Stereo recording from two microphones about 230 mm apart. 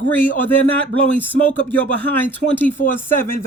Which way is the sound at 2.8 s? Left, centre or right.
Left.